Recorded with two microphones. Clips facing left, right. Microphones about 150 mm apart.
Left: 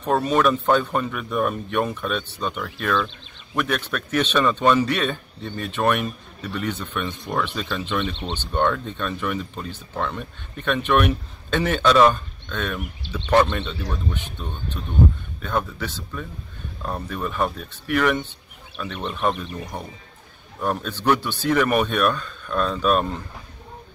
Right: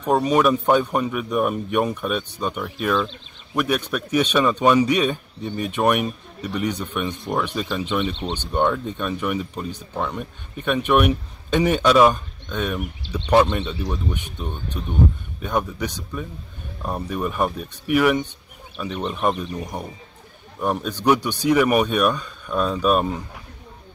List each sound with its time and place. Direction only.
0.0 s a man's voice: 10° right (ahead or behind)
19.5 s a man's voice: 15° right (ahead or behind)